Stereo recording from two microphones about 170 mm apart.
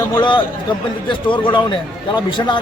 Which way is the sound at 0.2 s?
25° left (ahead or behind).